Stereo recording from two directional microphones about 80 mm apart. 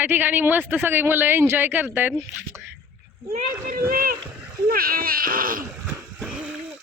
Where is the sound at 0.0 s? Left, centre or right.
Right.